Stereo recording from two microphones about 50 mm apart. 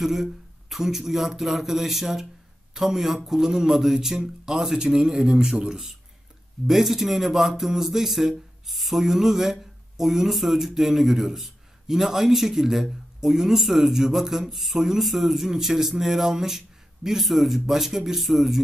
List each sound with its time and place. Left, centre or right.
0.0 s speech: centre